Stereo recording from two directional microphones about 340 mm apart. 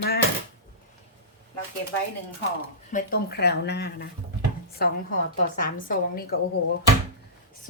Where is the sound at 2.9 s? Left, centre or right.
Left.